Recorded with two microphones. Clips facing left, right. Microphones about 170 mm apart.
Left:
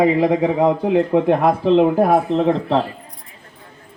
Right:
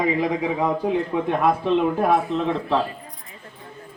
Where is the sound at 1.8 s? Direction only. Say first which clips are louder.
Left 5 dB; 35° left (ahead or behind).